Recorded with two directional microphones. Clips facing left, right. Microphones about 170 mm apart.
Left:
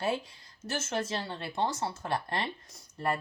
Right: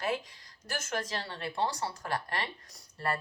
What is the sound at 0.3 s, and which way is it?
Speech, 25° left (ahead or behind).